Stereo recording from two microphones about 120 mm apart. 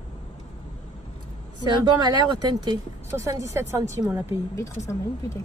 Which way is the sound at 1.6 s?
35° right (ahead or behind).